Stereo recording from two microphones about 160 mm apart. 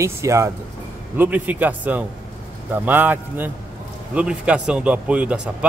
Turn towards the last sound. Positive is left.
turn(degrees=-5)  # may be behind; listen again after turning